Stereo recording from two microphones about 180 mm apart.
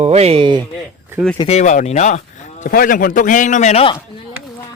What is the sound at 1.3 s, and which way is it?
Speech, 25° left (ahead or behind).